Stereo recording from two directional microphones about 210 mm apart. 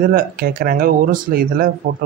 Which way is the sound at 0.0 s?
40° right (ahead or behind).